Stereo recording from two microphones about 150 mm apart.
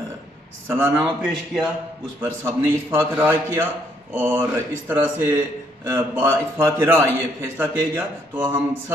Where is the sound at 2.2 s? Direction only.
15° right (ahead or behind).